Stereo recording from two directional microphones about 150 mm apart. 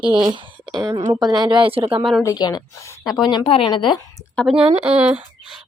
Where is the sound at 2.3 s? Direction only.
25° left (ahead or behind).